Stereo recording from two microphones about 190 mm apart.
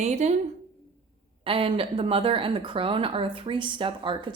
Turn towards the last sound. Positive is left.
turn(degrees=-25)  # may be behind; listen again after turning